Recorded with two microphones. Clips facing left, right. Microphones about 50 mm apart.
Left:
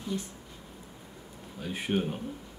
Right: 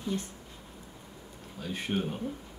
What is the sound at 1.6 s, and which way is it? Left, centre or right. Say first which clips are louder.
Speech: left 2 dB; centre.